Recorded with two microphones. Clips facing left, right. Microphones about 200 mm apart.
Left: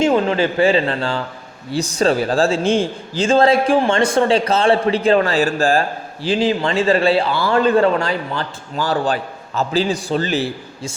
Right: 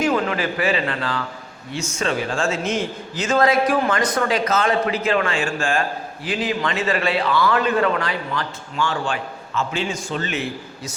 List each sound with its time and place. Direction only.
0.0 s a man's voice: 25° left (ahead or behind)